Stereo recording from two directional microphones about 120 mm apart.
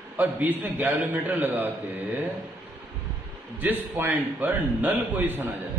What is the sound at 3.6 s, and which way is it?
A man's voice, 15° right (ahead or behind).